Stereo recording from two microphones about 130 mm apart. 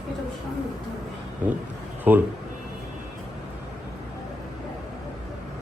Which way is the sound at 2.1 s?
15° right (ahead or behind).